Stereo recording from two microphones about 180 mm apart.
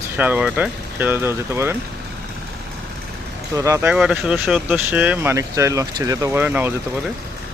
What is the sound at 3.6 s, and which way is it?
Speech, 15° right (ahead or behind).